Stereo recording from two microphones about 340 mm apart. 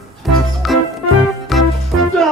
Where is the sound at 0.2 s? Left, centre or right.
Centre.